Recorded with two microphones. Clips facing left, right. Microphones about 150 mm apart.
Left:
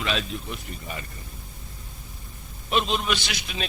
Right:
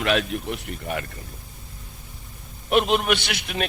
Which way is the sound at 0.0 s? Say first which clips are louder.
Right 6 dB; 60° right (ahead or behind).